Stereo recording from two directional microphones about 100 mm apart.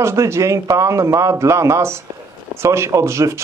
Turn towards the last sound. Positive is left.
turn(degrees=-30)  # may be behind; listen again after turning